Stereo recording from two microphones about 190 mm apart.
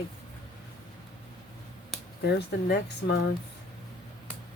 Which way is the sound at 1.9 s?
Centre (ahead or behind).